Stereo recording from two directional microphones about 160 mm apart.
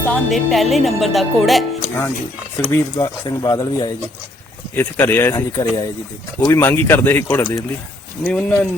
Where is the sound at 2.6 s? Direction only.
15° left (ahead or behind).